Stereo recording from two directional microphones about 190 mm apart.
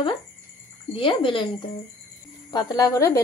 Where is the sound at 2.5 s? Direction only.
20° left (ahead or behind).